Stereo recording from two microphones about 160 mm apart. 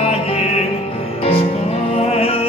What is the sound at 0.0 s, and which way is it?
Music, 35° left (ahead or behind).